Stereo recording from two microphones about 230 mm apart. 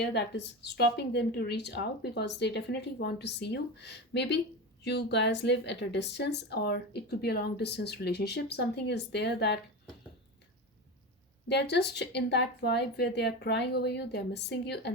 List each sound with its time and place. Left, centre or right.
0.0 s a woman's voice: left
11.4 s a woman's voice: left